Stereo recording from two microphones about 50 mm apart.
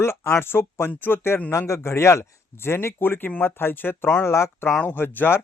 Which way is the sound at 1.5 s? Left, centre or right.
Left.